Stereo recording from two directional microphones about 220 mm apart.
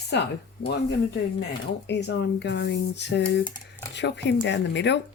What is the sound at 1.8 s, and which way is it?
Speech, 50° left (ahead or behind).